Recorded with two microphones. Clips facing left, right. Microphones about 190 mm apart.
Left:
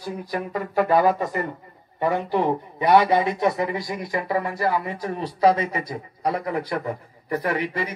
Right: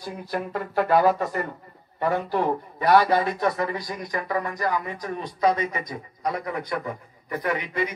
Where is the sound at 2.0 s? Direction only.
15° left (ahead or behind).